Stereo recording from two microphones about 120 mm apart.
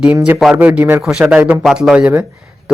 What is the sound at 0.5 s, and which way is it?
Speech, 15° right (ahead or behind).